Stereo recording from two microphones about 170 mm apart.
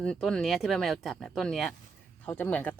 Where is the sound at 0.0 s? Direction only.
5° left (ahead or behind).